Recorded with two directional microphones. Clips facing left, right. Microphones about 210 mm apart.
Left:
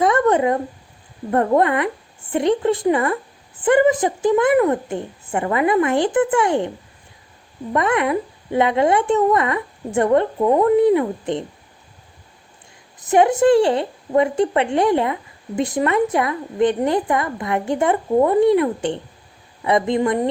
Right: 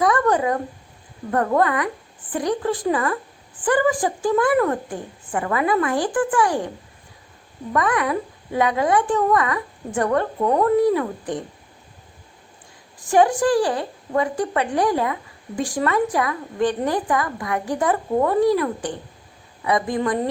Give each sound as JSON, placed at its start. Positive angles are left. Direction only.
{"t": 0.0, "sound": "a sound", "side_deg": 25}
{"t": 1.3, "sound": "a woman's voice", "side_deg": 25}
{"t": 7.7, "sound": "a woman's voice", "side_deg": 25}
{"t": 13.0, "sound": "a woman's voice", "side_deg": 20}